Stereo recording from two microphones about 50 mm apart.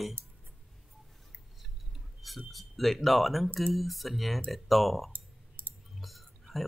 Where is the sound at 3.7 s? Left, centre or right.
Centre.